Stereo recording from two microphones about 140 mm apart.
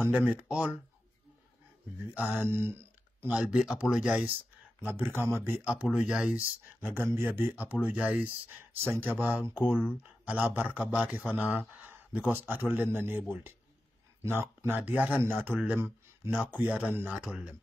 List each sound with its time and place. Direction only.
0.0 s speech: 10° right (ahead or behind)
2.3 s speech: 15° right (ahead or behind)